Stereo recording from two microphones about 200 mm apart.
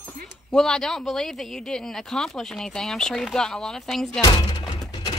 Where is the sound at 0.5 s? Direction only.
5° left (ahead or behind).